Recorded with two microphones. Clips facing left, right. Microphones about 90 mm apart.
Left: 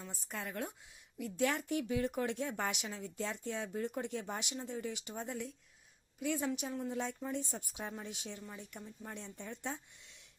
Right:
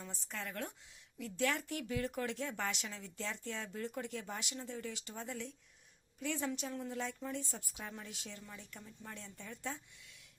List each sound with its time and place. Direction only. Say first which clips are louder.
0.0 s speech: left 1 dB; 5° left (ahead or behind)
0.3 s speech: left 2 dB; 15° left (ahead or behind)